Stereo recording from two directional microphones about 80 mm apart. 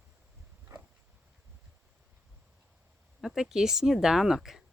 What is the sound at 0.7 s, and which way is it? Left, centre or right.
Dog, right.